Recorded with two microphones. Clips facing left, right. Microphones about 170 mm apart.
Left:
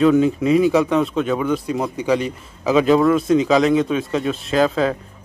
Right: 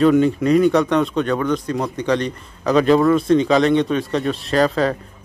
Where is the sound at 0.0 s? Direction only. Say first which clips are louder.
Even; centre (ahead or behind).